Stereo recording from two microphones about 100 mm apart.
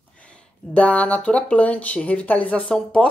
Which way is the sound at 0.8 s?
15° left (ahead or behind).